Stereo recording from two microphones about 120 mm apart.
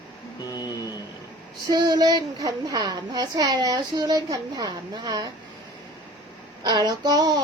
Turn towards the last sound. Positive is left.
turn(degrees=-35)  # may be behind; listen again after turning